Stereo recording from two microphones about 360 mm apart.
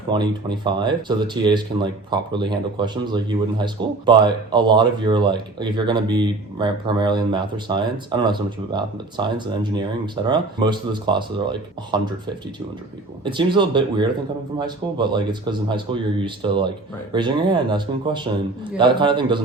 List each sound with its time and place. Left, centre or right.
0.1 s speech: centre
13.2 s speech: centre